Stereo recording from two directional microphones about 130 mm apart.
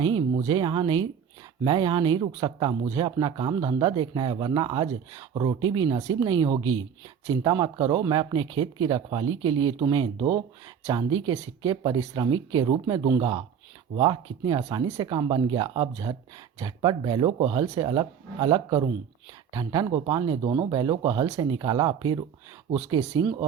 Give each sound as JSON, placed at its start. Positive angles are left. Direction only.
{"t": 0.0, "sound": "speech", "side_deg": -40}
{"t": 22.7, "sound": "speech", "side_deg": -55}
{"t": 23.1, "sound": "speech", "side_deg": -35}